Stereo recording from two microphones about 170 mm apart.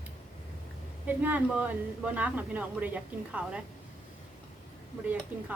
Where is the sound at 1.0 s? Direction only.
10° right (ahead or behind).